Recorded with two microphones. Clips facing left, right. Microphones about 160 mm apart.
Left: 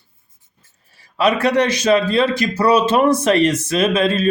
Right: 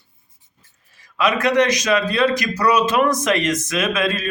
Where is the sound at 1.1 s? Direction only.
35° left (ahead or behind).